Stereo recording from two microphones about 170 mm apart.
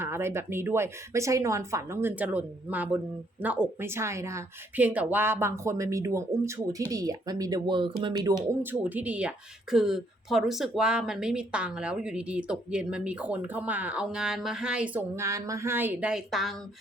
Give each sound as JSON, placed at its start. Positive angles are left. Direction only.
{"t": 0.0, "sound": "speech", "side_deg": -15}
{"t": 8.6, "sound": "speech", "side_deg": -10}